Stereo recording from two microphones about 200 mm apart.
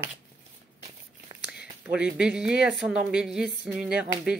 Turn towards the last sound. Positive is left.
turn(degrees=-5)  # may be behind; listen again after turning